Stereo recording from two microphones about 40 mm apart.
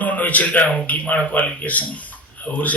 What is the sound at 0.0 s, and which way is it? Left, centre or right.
A man's voice, left.